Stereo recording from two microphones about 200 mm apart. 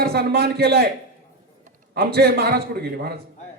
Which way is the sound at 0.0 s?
55° right (ahead or behind).